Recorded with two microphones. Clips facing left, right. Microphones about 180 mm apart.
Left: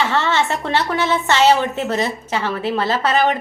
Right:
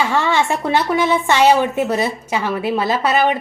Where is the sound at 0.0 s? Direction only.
10° right (ahead or behind).